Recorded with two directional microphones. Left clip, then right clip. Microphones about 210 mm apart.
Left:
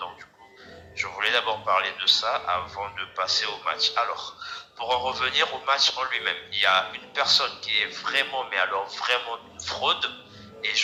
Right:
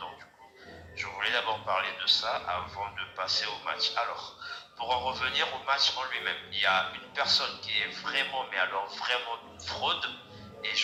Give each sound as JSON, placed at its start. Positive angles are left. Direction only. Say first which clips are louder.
{"t": 0.9, "sound": "a man's voice", "louder": "left 6 dB", "side_deg": 30}